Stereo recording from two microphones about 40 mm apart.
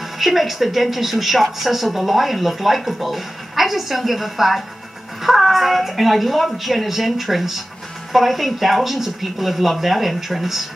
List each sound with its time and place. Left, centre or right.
0.2 s a woman's voice: centre